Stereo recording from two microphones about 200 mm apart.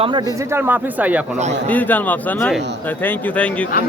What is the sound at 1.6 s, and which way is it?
Speech, 10° left (ahead or behind).